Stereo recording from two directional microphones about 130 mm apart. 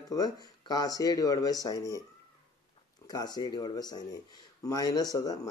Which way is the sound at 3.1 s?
30° left (ahead or behind).